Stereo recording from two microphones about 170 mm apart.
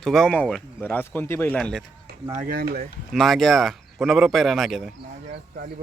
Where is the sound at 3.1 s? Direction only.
Centre (ahead or behind).